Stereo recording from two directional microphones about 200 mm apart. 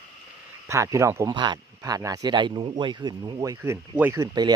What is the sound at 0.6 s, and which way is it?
Speech, 15° right (ahead or behind).